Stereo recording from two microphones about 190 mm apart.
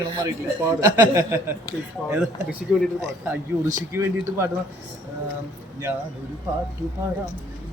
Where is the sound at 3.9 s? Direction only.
15° right (ahead or behind).